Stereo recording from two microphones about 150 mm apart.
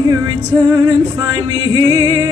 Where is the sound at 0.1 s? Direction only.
25° right (ahead or behind).